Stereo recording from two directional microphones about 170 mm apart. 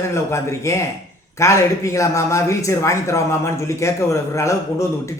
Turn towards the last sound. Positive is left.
turn(degrees=15)  # may be behind; listen again after turning